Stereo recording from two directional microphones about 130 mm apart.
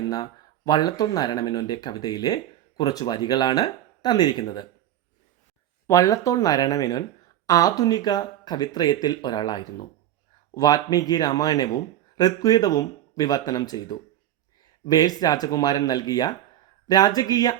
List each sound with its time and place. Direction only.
0.1 s speech: 30° left (ahead or behind)
5.9 s speech: 25° left (ahead or behind)